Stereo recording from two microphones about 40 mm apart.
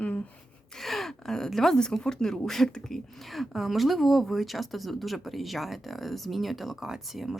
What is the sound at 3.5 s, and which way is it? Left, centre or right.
A woman's voice, centre.